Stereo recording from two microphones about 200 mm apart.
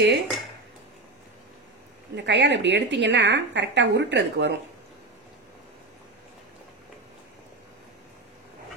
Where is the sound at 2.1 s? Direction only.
60° right (ahead or behind).